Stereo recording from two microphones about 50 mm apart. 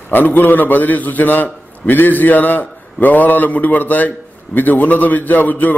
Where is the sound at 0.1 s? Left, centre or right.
Left.